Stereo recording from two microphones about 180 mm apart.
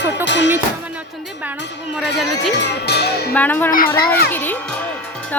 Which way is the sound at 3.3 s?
10° left (ahead or behind).